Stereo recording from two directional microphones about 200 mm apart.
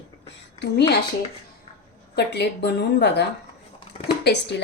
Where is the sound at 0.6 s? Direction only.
55° left (ahead or behind).